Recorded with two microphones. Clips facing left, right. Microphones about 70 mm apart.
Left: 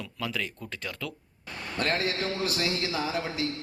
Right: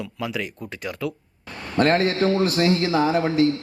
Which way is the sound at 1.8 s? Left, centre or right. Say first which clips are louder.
Right 10 dB; right.